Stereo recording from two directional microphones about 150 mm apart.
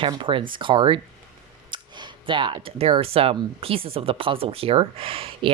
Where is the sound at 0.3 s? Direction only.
35° right (ahead or behind).